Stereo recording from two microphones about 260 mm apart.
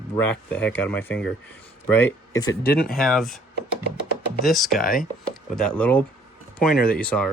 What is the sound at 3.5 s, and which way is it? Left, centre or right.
Music, right.